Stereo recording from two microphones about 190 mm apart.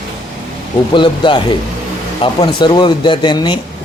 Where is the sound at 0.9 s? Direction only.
25° left (ahead or behind).